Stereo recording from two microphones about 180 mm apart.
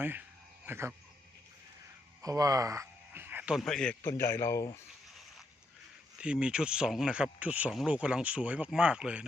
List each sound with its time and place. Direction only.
0.0 s a sound: 10° right (ahead or behind)
2.2 s speech: 20° right (ahead or behind); by 3.9 s 5° left (ahead or behind)
4.0 s a man's voice: 15° left (ahead or behind)
6.1 s speech: 5° right (ahead or behind)